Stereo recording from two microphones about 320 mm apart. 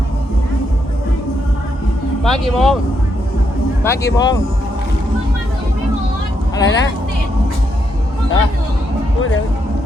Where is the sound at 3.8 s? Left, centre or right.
Centre.